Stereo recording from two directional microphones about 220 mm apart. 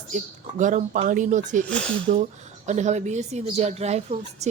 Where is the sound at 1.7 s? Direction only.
5° left (ahead or behind).